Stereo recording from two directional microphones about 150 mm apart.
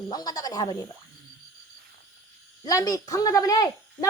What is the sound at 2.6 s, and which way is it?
A woman's voice, 25° left (ahead or behind).